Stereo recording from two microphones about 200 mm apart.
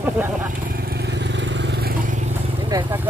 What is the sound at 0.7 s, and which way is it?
Vehicle, 50° right (ahead or behind).